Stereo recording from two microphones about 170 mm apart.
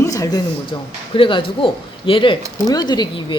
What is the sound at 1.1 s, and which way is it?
Speech, 30° left (ahead or behind).